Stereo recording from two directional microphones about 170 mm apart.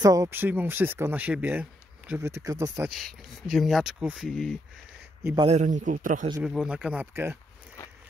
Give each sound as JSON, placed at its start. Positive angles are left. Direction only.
{"t": 0.0, "sound": "speech", "side_deg": -20}
{"t": 2.9, "sound": "speech", "side_deg": 0}
{"t": 5.4, "sound": "a man's voice", "side_deg": -40}
{"t": 6.4, "sound": "speech", "side_deg": -5}